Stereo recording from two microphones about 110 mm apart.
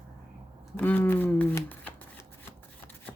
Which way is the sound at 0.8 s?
15° left (ahead or behind).